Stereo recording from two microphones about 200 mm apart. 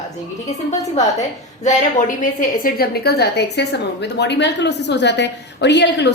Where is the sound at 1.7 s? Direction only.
40° left (ahead or behind).